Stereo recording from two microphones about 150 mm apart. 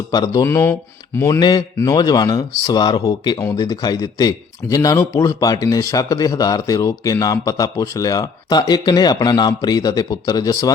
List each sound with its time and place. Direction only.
0.1 s a man's voice: 25° left (ahead or behind)